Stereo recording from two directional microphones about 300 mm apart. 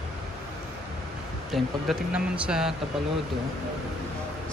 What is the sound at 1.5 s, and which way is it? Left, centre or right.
Speech, centre.